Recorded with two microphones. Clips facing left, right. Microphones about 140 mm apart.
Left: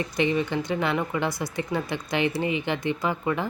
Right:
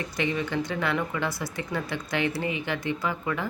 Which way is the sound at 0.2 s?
20° left (ahead or behind).